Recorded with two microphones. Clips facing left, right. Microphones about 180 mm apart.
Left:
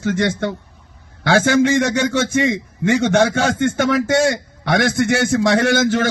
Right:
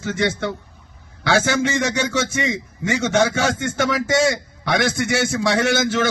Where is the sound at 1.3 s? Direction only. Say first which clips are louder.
Left 5 dB; 55° left (ahead or behind).